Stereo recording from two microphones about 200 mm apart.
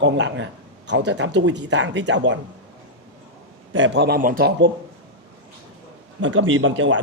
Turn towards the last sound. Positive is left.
turn(degrees=-75)  # may be behind; listen again after turning